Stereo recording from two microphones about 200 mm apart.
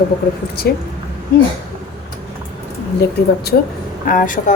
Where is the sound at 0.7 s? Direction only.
55° left (ahead or behind).